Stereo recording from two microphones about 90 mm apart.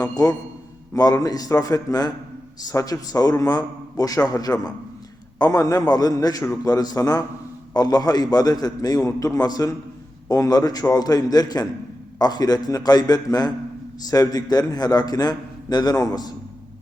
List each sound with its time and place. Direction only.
0.0 s a man's voice: 40° left (ahead or behind)